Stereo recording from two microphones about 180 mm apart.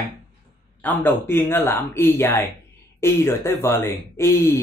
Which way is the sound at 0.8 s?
10° left (ahead or behind).